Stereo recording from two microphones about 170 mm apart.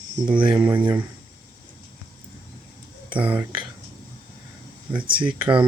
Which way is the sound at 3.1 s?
10° right (ahead or behind).